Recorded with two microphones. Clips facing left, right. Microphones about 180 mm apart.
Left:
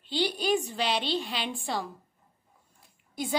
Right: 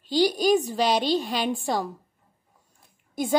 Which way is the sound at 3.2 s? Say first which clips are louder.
Right 6 dB; 45° right (ahead or behind).